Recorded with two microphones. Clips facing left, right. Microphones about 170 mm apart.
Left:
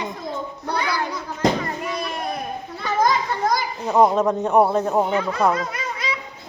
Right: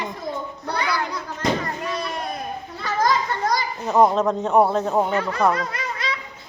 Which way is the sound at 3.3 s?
10° left (ahead or behind).